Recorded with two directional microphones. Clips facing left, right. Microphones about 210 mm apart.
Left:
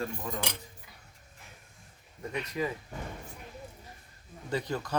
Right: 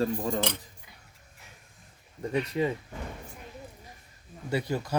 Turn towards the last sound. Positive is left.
turn(degrees=-10)  # may be behind; listen again after turning